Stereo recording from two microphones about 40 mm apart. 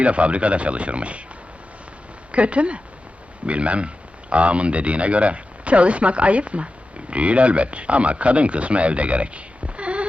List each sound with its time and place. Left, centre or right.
0.0 s speech: right
2.3 s speech: right